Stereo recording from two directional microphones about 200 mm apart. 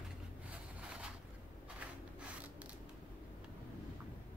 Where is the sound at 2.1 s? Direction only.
5° right (ahead or behind).